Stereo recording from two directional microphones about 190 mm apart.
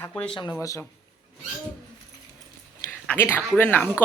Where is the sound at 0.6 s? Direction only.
15° left (ahead or behind).